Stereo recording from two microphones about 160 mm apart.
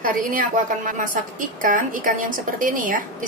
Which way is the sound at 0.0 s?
60° right (ahead or behind).